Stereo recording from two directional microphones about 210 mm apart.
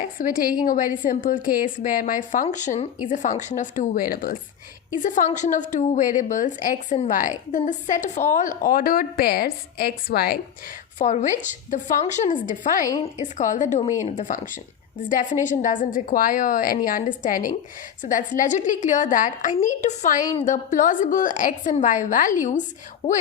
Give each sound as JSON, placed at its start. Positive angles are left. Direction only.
{"t": 0.2, "sound": "a woman's voice", "side_deg": 40}
{"t": 10.9, "sound": "a woman's voice", "side_deg": 35}